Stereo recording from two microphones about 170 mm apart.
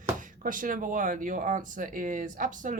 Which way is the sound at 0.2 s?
50° right (ahead or behind).